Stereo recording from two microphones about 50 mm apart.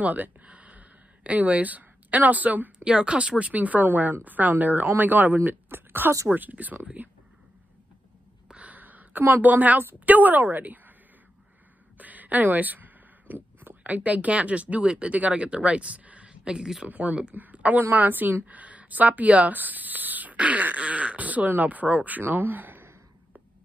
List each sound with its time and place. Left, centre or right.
0.0 s speech: right
2.8 s a woman's voice: centre; by 6.1 s right
6.2 s speech: right
8.5 s a woman's voice: right
12.0 s a sound: right
13.8 s speech: right